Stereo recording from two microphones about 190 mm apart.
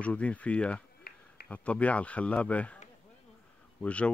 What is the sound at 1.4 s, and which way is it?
Speech, 5° left (ahead or behind).